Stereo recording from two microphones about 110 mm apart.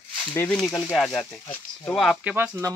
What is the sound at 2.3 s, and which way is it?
Speech, 20° right (ahead or behind).